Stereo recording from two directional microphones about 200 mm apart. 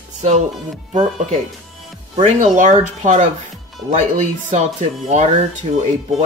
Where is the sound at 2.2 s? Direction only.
35° right (ahead or behind).